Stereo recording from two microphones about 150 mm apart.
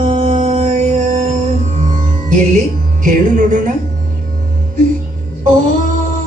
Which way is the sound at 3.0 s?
60° right (ahead or behind).